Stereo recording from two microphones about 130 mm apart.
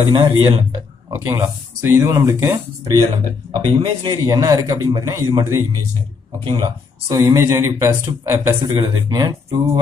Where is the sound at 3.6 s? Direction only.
30° right (ahead or behind).